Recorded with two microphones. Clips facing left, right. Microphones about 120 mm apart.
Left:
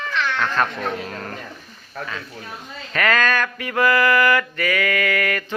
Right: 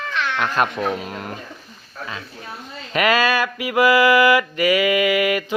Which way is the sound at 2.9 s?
15° right (ahead or behind).